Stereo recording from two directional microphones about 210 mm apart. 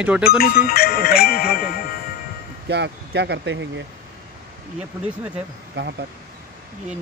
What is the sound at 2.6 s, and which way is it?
Speech, 55° right (ahead or behind).